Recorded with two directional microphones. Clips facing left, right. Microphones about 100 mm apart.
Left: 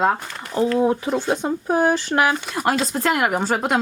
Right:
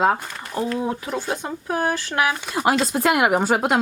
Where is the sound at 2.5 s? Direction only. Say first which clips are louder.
Right 1 dB; centre (ahead or behind).